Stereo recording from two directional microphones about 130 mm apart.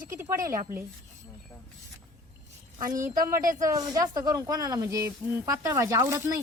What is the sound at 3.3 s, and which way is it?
Speech, 90° right.